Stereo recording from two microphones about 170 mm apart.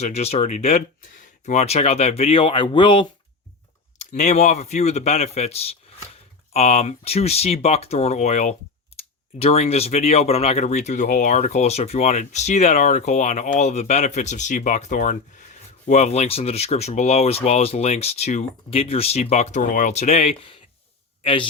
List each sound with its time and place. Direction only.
0.0 s speech: 40° left (ahead or behind)
3.9 s speech: 45° left (ahead or behind)